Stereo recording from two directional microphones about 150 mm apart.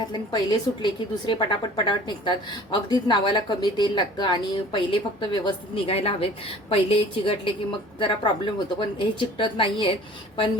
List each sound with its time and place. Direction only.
0.3 s a woman's voice: 30° left (ahead or behind)